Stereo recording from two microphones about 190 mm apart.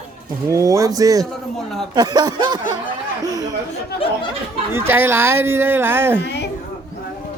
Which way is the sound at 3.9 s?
55° left (ahead or behind).